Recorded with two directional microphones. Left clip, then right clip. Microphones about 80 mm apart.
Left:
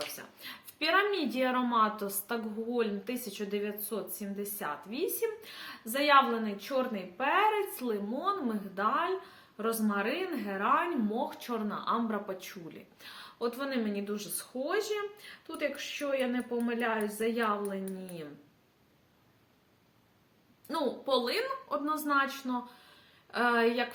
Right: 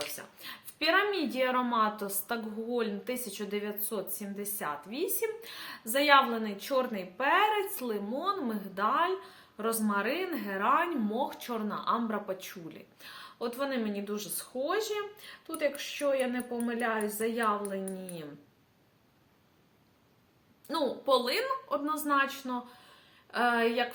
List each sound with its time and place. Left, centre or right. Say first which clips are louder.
0.2 s a woman's voice: right 1 dB; right
20.7 s a woman's voice: right 3 dB; right